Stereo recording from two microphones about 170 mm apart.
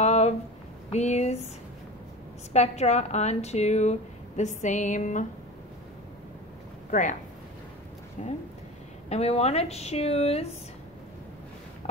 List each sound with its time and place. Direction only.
0.0 s a sound: 40° left (ahead or behind)
0.9 s a woman's voice: 40° left (ahead or behind)
2.5 s a woman's voice: 40° left (ahead or behind)
6.9 s speech: 45° left (ahead or behind)
8.2 s a woman's voice: 45° left (ahead or behind)